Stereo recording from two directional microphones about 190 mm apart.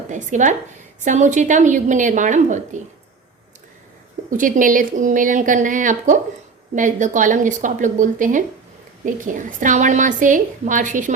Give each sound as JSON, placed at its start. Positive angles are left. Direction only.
{"t": 0.1, "sound": "a woman's voice", "side_deg": -40}
{"t": 4.3, "sound": "a woman's voice", "side_deg": -45}